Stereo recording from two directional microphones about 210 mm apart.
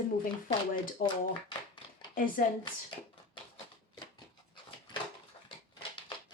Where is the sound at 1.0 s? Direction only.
45° left (ahead or behind).